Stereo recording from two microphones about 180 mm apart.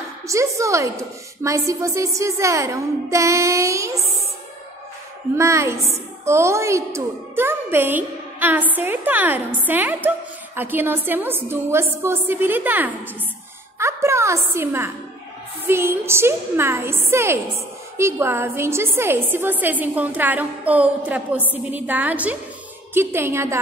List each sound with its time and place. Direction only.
0.3 s a woman's voice: 15° right (ahead or behind)
5.3 s a woman's voice: 15° right (ahead or behind)